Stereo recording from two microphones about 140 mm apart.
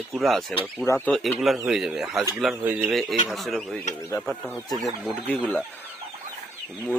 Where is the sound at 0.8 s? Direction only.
15° left (ahead or behind).